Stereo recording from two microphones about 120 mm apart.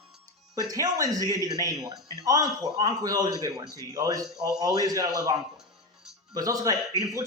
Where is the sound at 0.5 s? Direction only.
30° right (ahead or behind).